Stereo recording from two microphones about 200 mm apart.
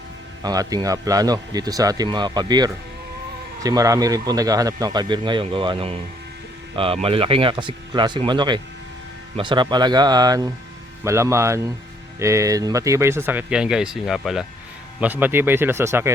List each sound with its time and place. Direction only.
0.4 s speech: 20° right (ahead or behind)